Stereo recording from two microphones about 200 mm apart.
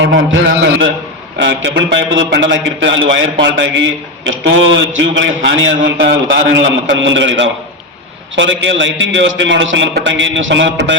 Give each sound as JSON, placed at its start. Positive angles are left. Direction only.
{"t": 0.3, "sound": "a man's voice", "side_deg": -65}